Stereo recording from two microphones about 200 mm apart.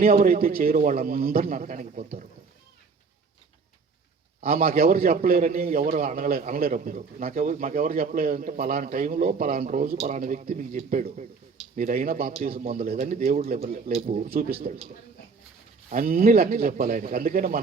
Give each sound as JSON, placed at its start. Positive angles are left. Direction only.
{"t": 0.0, "sound": "a man's voice", "side_deg": -45}
{"t": 4.4, "sound": "a man's voice", "side_deg": -50}
{"t": 15.9, "sound": "a man's voice", "side_deg": -45}